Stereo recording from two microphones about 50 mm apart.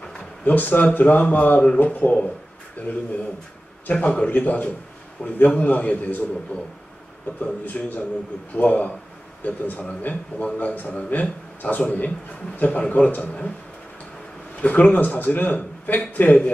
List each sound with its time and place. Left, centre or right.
0.0 s a man's voice: left
2.8 s a man's voice: left
3.9 s a man's voice: left
7.6 s a man's voice: left
14.6 s a man's voice: left